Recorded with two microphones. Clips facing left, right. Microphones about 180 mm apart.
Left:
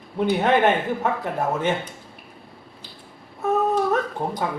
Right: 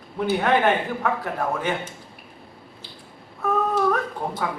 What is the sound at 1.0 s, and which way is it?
Speech, 25° left (ahead or behind).